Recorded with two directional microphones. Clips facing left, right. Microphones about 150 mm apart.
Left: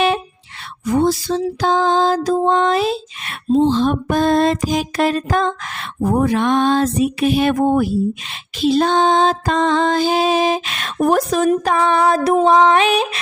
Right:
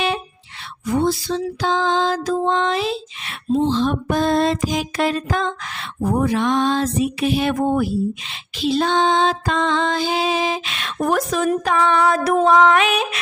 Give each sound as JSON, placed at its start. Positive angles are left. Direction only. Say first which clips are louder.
{"t": 0.9, "sound": "a sound", "louder": "left 3 dB", "side_deg": 45}
{"t": 11.1, "sound": "speech", "louder": "left 3 dB", "side_deg": 35}
{"t": 12.5, "sound": "music", "louder": "left 1 dB", "side_deg": 30}